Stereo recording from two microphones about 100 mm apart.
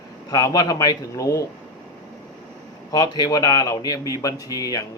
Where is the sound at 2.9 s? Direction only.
45° left (ahead or behind).